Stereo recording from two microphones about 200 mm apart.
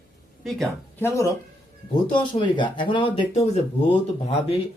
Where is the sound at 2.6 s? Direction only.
25° left (ahead or behind).